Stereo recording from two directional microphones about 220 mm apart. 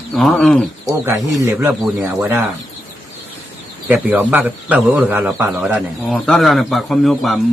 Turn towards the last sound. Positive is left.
turn(degrees=0)  # may be behind; listen again after turning